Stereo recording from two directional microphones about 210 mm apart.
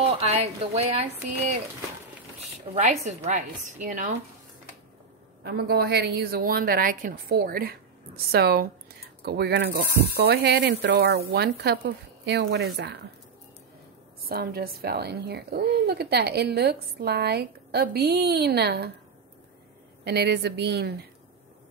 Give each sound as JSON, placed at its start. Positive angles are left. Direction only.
{"t": 0.0, "sound": "speech", "side_deg": -30}
{"t": 2.7, "sound": "speech", "side_deg": -35}
{"t": 5.4, "sound": "a woman's voice", "side_deg": -50}
{"t": 14.3, "sound": "a woman's voice", "side_deg": -45}
{"t": 20.1, "sound": "a woman's voice", "side_deg": -50}